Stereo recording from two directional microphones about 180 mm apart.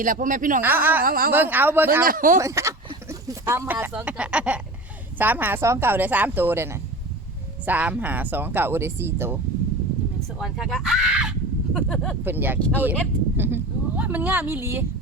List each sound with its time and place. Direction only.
0.0 s speech: 45° right (ahead or behind)
0.6 s speech: 10° right (ahead or behind)
1.0 s speech: 55° right (ahead or behind)
1.3 s speech: 10° right (ahead or behind)
2.0 s speech: 50° right (ahead or behind)
2.4 s speech: 15° right (ahead or behind)
10.4 s speech: centre (ahead or behind)